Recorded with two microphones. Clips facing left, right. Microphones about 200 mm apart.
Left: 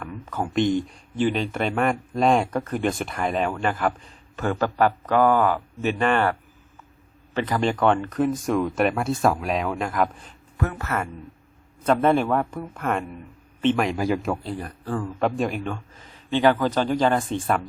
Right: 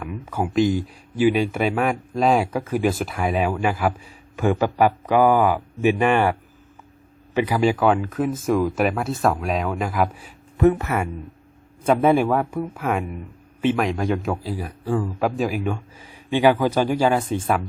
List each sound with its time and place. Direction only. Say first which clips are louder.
0.0 s speech: right 3 dB; 10° right (ahead or behind)
7.3 s speech: right 4 dB; 10° right (ahead or behind)
10.6 s speech: right 9 dB; 20° right (ahead or behind)